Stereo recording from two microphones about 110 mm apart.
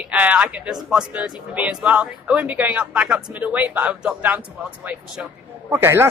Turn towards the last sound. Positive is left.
turn(degrees=-25)  # may be behind; listen again after turning